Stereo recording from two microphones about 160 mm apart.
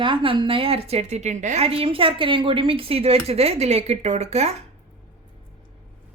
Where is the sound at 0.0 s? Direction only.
35° right (ahead or behind).